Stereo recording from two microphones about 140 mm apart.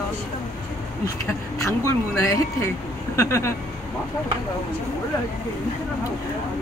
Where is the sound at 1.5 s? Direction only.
20° left (ahead or behind).